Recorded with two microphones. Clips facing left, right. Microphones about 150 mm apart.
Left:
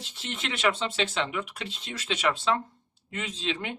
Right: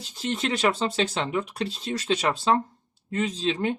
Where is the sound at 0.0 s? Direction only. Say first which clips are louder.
Right 8 dB; 40° right (ahead or behind).